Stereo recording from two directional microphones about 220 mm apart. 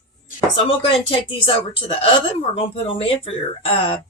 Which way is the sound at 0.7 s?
25° left (ahead or behind).